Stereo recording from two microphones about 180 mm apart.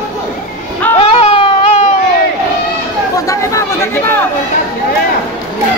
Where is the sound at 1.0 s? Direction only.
30° left (ahead or behind).